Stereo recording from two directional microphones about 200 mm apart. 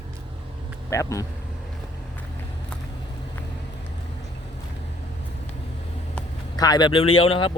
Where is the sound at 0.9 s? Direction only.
15° left (ahead or behind).